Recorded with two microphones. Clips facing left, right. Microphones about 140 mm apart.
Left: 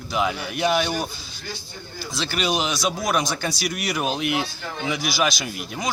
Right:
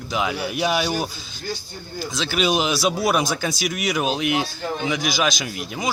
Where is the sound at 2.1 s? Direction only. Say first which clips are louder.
Right 3 dB; centre (ahead or behind).